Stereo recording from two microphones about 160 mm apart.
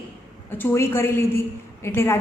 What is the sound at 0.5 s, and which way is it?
A woman's voice, 15° left (ahead or behind).